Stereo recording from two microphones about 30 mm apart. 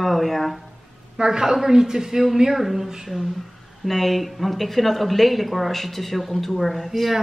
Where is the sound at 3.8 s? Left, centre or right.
Centre.